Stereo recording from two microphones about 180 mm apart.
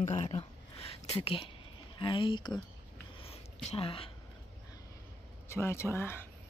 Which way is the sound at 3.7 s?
30° left (ahead or behind).